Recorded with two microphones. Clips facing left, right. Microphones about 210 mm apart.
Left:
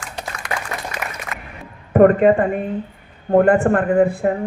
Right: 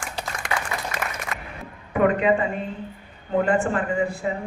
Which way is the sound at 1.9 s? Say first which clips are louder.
Left 8 dB; 50° left (ahead or behind).